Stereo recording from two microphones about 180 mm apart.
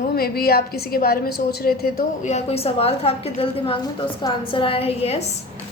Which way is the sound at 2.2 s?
35° left (ahead or behind).